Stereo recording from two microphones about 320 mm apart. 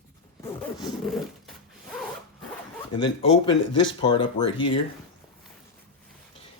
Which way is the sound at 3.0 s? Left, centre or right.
Centre.